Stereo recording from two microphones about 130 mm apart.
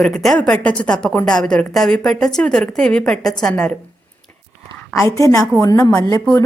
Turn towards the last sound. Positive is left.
turn(degrees=25)  # may be behind; listen again after turning